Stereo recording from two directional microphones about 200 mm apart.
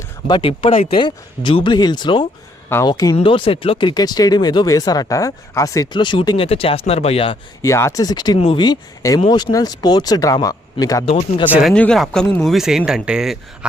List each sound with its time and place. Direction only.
0.3 s speech: 25° left (ahead or behind)
7.6 s speech: 15° left (ahead or behind)
11.1 s speech: 30° left (ahead or behind)
11.5 s speech: centre (ahead or behind)